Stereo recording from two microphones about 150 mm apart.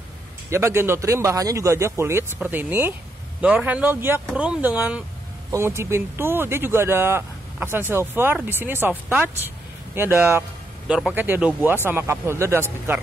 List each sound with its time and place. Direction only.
0.5 s speech: 15° right (ahead or behind)
9.9 s speech: 15° right (ahead or behind)